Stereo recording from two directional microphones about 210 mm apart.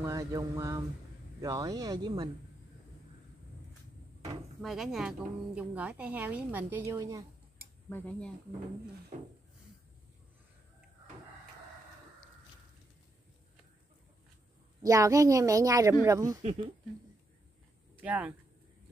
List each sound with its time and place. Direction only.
0.0 s a woman's voice: 15° right (ahead or behind)
4.6 s a woman's voice: centre (ahead or behind)
7.9 s speech: 10° left (ahead or behind)
9.1 s speech: 35° right (ahead or behind)
14.8 s a woman's voice: 15° right (ahead or behind)
18.0 s a woman's voice: 5° right (ahead or behind)